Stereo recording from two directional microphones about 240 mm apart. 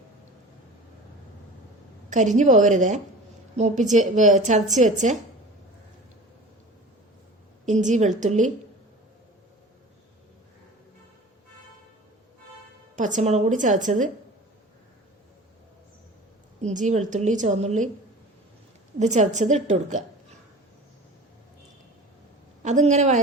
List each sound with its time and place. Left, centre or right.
2.0 s a woman's voice: right
7.6 s a woman's voice: right
13.0 s a woman's voice: right
16.6 s a woman's voice: right
18.9 s a woman's voice: right
22.6 s a woman's voice: right